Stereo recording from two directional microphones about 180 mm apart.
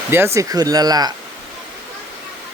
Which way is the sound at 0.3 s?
20° right (ahead or behind).